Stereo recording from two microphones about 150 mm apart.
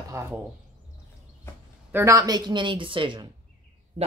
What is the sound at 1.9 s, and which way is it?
Speech, 15° right (ahead or behind).